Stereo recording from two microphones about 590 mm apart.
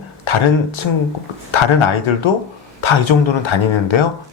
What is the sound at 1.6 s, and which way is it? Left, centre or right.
Speech, left.